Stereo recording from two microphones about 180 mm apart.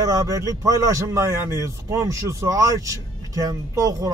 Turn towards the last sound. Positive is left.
turn(degrees=-20)  # may be behind; listen again after turning